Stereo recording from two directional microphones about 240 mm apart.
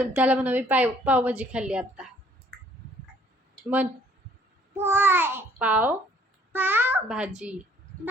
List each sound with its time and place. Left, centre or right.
0.0 s a woman's voice: centre
4.7 s a child's voice: centre